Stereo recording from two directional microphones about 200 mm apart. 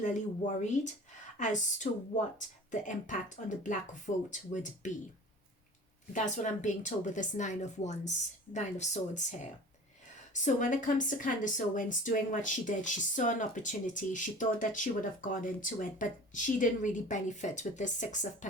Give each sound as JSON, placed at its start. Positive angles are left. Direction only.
{"t": 0.0, "sound": "speech", "side_deg": 35}
{"t": 2.8, "sound": "speech", "side_deg": 40}
{"t": 6.1, "sound": "speech", "side_deg": 40}